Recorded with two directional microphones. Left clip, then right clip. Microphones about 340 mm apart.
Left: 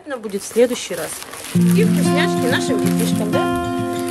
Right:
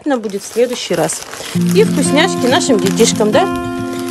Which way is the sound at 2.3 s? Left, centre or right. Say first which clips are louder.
Right 6 dB; centre.